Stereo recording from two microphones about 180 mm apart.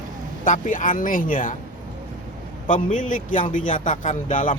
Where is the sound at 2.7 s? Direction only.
45° left (ahead or behind).